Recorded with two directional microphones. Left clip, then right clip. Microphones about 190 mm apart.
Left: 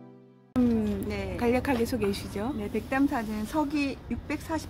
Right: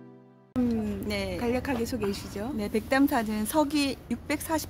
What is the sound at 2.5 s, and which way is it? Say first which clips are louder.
A woman's voice: right 5 dB; 45° right (ahead or behind).